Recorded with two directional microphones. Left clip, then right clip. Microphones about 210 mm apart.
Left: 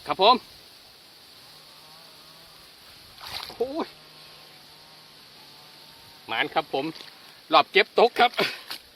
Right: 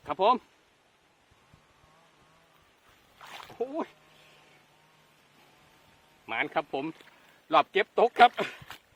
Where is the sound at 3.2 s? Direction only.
25° right (ahead or behind).